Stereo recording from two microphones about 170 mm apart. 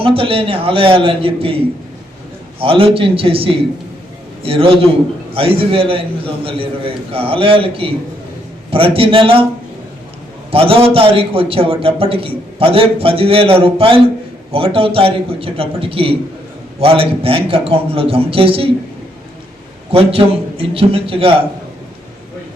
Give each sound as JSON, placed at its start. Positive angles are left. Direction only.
{"t": 0.0, "sound": "a man's voice", "side_deg": -30}
{"t": 2.6, "sound": "a man's voice", "side_deg": -30}
{"t": 10.5, "sound": "a man's voice", "side_deg": -35}
{"t": 19.9, "sound": "a man's voice", "side_deg": -35}